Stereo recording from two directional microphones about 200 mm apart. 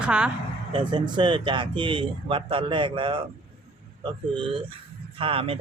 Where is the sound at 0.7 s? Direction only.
25° right (ahead or behind).